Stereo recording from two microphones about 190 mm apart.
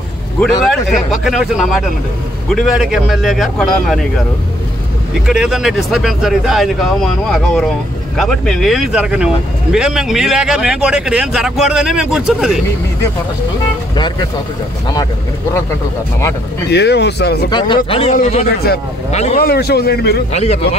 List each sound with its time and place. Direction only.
0.4 s speech: centre (ahead or behind)
5.2 s speech: 5° right (ahead or behind)
16.7 s a man's voice: 60° left (ahead or behind)
17.5 s a man's voice: 25° left (ahead or behind)
18.1 s a man's voice: 40° left (ahead or behind)
18.5 s a man's voice: 55° left (ahead or behind)
20.3 s a man's voice: 35° left (ahead or behind)